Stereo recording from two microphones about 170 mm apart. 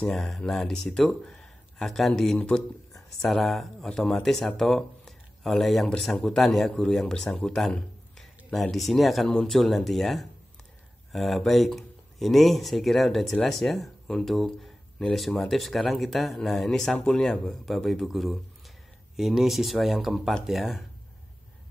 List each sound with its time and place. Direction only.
0.0 s speech: centre (ahead or behind)